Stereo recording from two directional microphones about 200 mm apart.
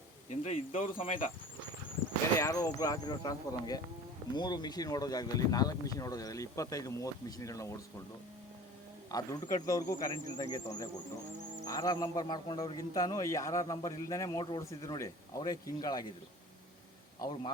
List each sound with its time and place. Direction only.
0.3 s insect: 30° left (ahead or behind)
2.4 s speech: 20° left (ahead or behind)
9.1 s speech: 20° left (ahead or behind)
17.2 s speech: 20° left (ahead or behind)